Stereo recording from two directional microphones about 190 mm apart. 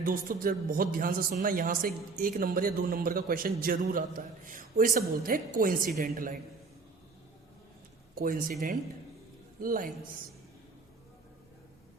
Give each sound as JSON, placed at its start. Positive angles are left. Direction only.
{"t": 0.0, "sound": "a man's voice", "side_deg": -50}
{"t": 8.1, "sound": "speech", "side_deg": -45}
{"t": 9.6, "sound": "a man's voice", "side_deg": -45}